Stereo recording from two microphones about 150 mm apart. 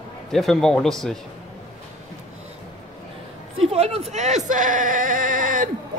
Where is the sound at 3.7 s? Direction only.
40° right (ahead or behind).